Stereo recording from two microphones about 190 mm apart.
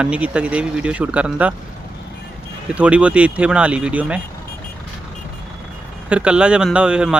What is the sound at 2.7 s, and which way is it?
Speech, 5° right (ahead or behind).